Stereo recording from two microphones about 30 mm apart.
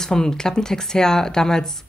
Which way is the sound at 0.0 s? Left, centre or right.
Left.